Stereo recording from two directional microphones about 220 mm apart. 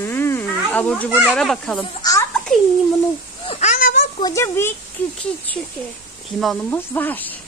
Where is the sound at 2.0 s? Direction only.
15° left (ahead or behind).